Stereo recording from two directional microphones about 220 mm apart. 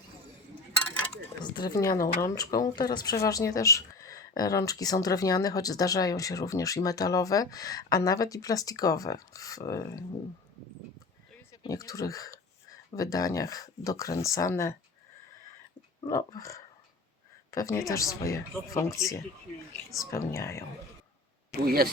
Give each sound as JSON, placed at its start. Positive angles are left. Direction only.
{"t": 1.4, "sound": "a woman's voice", "side_deg": 20}
{"t": 11.6, "sound": "a woman's voice", "side_deg": 15}
{"t": 16.0, "sound": "a woman's voice", "side_deg": 15}
{"t": 20.0, "sound": "a woman's voice", "side_deg": 15}
{"t": 21.6, "sound": "speech", "side_deg": -45}